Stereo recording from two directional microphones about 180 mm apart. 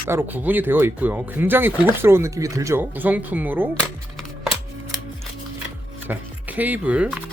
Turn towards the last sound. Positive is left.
turn(degrees=-5)  # may be behind; listen again after turning